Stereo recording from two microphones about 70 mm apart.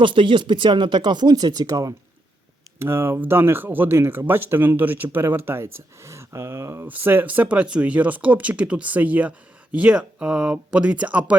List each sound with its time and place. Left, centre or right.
0.7 s speech: right
2.7 s speech: right
6.8 s speech: right
7.3 s speech: centre